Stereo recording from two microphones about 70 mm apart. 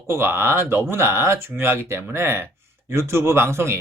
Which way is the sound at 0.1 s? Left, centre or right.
Right.